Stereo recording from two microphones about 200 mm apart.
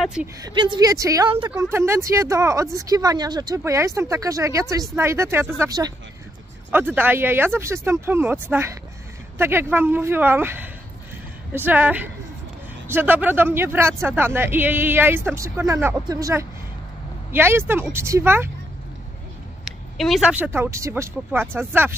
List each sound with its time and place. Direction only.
0.0 s a woman's voice: 5° right (ahead or behind)
0.4 s speech: 20° right (ahead or behind)
19.6 s speech: centre (ahead or behind)